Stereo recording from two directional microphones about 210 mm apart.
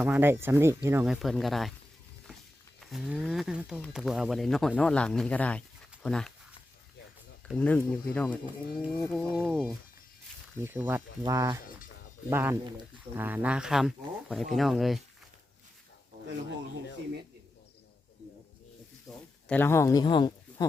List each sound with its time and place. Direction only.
0.0 s speech: 10° right (ahead or behind)
2.8 s speech: centre (ahead or behind)
7.4 s speech: 5° left (ahead or behind)
19.1 s a sound: centre (ahead or behind)
19.5 s speech: 10° left (ahead or behind)